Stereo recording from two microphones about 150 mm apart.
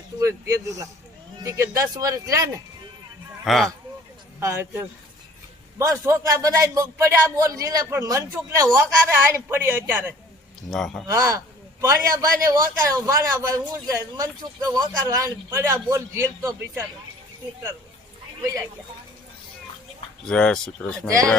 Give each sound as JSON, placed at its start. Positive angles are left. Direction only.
{"t": 0.2, "sound": "a man's voice", "side_deg": -20}
{"t": 3.4, "sound": "speech", "side_deg": 0}
{"t": 4.4, "sound": "a man's voice", "side_deg": -20}
{"t": 10.7, "sound": "speech", "side_deg": 5}
{"t": 11.1, "sound": "a man's voice", "side_deg": -20}
{"t": 20.2, "sound": "speech", "side_deg": 5}